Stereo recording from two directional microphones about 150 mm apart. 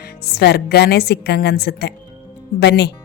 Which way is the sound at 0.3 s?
90° left.